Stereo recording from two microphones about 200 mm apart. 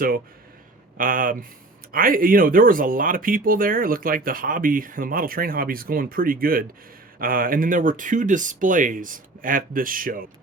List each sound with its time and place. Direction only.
0.9 s speech: 45° right (ahead or behind)